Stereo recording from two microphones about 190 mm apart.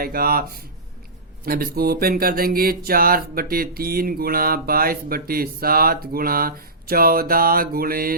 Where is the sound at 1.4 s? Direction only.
50° right (ahead or behind).